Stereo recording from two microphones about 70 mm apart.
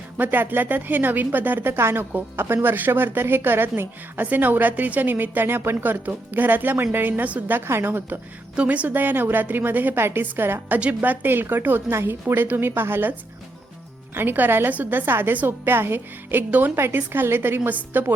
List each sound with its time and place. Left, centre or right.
0.2 s a woman's voice: right
8.5 s speech: centre
10.8 s speech: right
16.7 s a woman's voice: right